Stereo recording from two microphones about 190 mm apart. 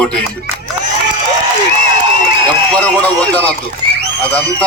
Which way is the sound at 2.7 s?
5° left (ahead or behind).